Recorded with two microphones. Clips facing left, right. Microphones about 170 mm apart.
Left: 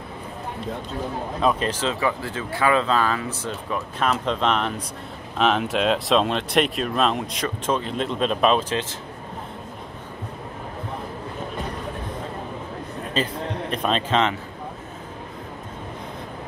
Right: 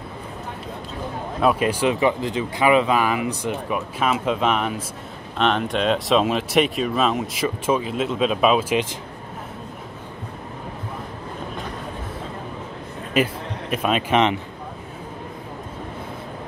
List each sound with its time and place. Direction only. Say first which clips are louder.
1.4 s speech: right 4 dB; 10° right (ahead or behind)
13.1 s a man's voice: right 4 dB; 10° right (ahead or behind)